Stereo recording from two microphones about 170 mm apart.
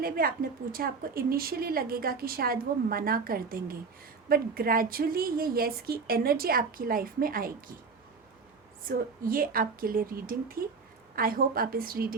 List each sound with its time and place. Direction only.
0.2 s a woman's voice: 55° right (ahead or behind)
8.9 s a woman's voice: 55° right (ahead or behind)